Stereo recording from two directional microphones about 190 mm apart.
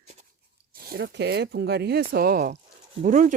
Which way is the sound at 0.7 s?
50° right (ahead or behind).